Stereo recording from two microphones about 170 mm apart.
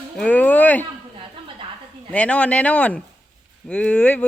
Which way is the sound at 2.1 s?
10° left (ahead or behind).